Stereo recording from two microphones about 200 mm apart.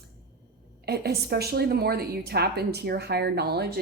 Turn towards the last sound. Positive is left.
turn(degrees=-55)  # may be behind; listen again after turning